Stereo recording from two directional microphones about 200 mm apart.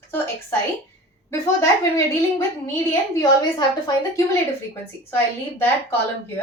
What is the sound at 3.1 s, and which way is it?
A woman's voice, 20° left (ahead or behind).